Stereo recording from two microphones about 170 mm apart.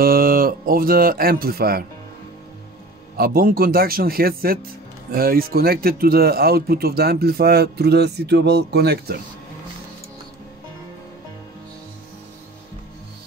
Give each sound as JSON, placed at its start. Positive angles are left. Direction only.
{"t": 0.0, "sound": "speech", "side_deg": -60}
{"t": 3.2, "sound": "speech", "side_deg": -60}